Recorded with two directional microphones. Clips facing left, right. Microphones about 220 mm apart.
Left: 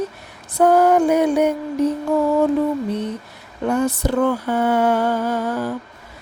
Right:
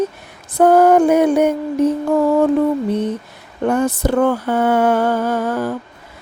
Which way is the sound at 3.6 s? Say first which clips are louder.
Right 3 dB; 50° right (ahead or behind).